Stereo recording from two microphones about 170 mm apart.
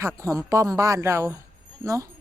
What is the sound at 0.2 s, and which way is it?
A man's voice, 20° right (ahead or behind).